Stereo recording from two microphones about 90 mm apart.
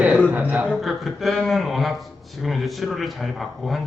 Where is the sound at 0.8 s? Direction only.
Centre (ahead or behind).